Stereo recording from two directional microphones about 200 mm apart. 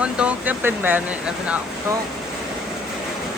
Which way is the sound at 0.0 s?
5° right (ahead or behind).